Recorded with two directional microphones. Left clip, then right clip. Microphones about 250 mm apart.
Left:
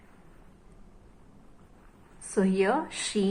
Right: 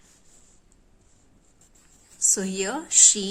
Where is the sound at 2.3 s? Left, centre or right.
Right.